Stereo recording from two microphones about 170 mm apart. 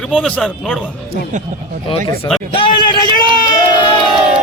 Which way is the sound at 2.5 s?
30° left (ahead or behind).